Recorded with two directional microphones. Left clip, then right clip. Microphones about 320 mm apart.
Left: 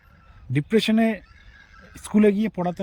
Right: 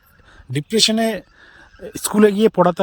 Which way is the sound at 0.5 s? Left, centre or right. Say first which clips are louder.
Right 5 dB; centre.